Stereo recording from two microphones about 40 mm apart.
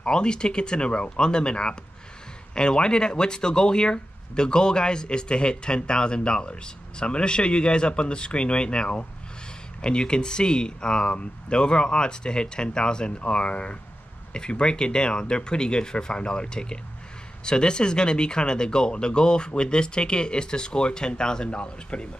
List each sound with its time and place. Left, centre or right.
0.0 s speech: left